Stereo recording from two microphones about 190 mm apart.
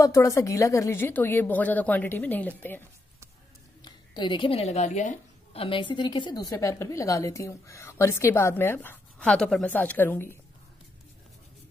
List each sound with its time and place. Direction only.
0.0 s a woman's voice: 15° left (ahead or behind)
3.8 s a woman's voice: 25° left (ahead or behind)